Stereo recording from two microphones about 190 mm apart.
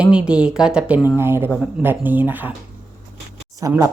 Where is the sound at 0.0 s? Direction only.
5° right (ahead or behind).